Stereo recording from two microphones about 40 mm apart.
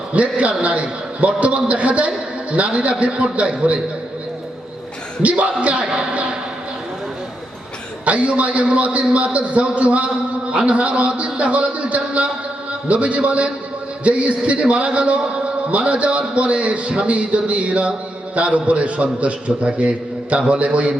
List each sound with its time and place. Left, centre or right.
0.1 s a man's voice: right
5.2 s music: right
8.0 s a man's voice: right